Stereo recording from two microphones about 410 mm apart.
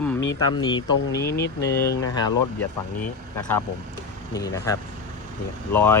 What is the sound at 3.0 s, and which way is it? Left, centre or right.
Speech, centre.